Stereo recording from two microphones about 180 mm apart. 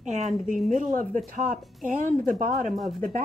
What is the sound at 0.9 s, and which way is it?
Speech, 45° right (ahead or behind).